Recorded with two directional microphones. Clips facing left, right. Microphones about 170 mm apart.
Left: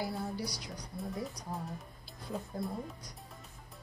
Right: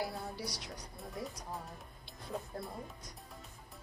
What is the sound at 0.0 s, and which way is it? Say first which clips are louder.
A woman's voice: left 3 dB; centre (ahead or behind).